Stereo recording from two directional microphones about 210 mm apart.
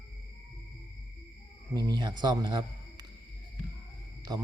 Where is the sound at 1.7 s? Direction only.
20° right (ahead or behind).